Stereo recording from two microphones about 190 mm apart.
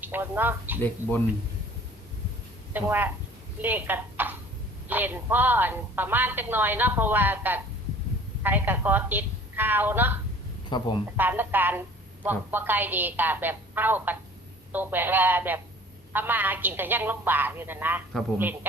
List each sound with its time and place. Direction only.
0.0 s a woman's voice: 10° right (ahead or behind)
2.7 s a woman's voice: 10° right (ahead or behind)
10.7 s speech: 25° left (ahead or behind)
11.2 s a woman's voice: 10° right (ahead or behind)